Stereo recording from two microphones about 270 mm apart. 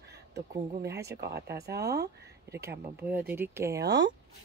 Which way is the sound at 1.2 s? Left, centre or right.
Right.